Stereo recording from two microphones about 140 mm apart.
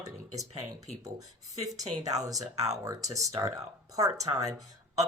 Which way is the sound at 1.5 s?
25° right (ahead or behind).